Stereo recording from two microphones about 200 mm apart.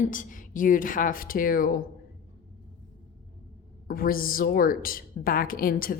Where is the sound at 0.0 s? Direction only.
40° left (ahead or behind).